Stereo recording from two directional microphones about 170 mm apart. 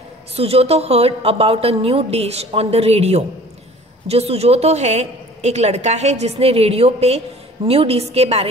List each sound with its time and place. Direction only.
0.4 s a woman's voice: 35° right (ahead or behind)